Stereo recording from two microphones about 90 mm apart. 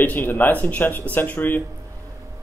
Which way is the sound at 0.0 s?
20° left (ahead or behind).